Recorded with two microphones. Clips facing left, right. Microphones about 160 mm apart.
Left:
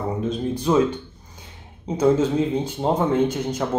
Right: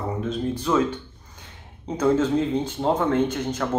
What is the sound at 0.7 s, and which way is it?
Speech, 25° left (ahead or behind).